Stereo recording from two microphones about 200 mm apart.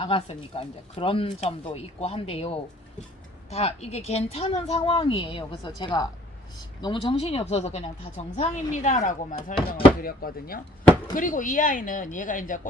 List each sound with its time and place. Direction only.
0.0 s a woman's voice: 30° left (ahead or behind)